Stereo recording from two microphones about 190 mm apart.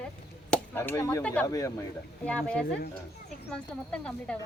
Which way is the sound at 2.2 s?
5° left (ahead or behind).